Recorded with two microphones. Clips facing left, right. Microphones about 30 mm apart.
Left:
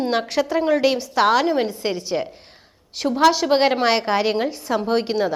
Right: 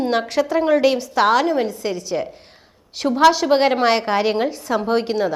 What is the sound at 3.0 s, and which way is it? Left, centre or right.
A woman's voice, centre.